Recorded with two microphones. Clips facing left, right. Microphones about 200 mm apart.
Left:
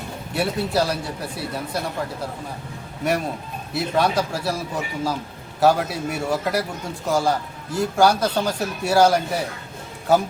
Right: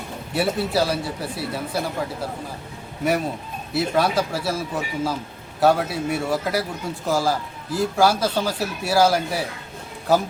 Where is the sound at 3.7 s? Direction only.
Centre (ahead or behind).